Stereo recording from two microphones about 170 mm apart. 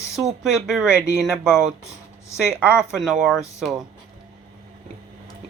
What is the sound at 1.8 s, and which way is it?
Speech, 15° left (ahead or behind).